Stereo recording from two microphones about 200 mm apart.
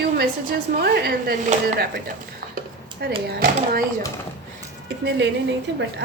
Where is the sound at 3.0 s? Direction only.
50° right (ahead or behind).